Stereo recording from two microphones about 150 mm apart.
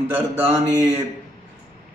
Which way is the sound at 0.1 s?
15° right (ahead or behind).